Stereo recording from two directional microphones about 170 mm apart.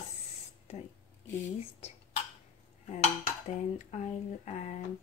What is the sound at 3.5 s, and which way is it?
Speech, 45° left (ahead or behind).